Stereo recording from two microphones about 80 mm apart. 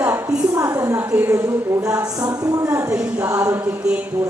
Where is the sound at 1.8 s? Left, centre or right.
Right.